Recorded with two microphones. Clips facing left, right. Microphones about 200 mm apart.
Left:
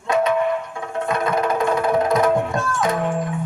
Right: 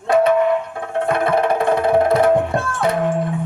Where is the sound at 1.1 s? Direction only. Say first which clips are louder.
Right 4 dB; 60° right (ahead or behind).